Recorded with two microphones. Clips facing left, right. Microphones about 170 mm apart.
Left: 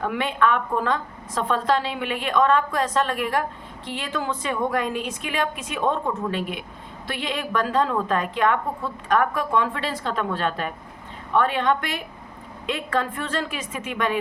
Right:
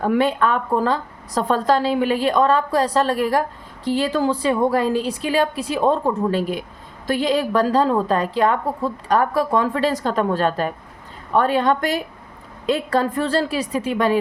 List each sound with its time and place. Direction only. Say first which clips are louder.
0.0 s a woman's voice: right 5 dB; 40° right (ahead or behind)